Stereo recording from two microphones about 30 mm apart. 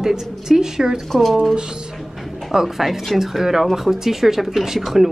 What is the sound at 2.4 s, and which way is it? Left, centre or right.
Speech, centre.